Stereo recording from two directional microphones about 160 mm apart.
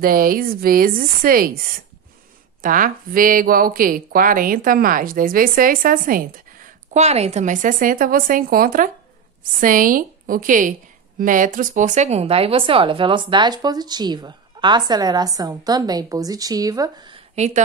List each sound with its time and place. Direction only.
0.0 s speech: 65° right (ahead or behind)
6.9 s speech: 45° right (ahead or behind); by 17.2 s 25° right (ahead or behind)